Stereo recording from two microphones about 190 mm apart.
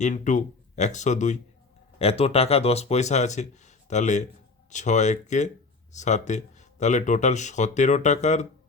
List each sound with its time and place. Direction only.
0.0 s speech: 40° left (ahead or behind)